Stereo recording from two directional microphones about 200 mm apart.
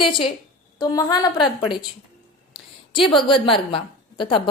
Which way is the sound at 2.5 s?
25° left (ahead or behind).